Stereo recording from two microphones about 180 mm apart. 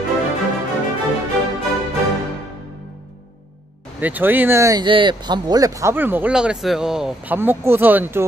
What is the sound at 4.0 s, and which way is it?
Speech, 10° right (ahead or behind).